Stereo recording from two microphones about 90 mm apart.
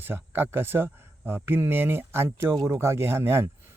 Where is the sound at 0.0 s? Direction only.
25° right (ahead or behind).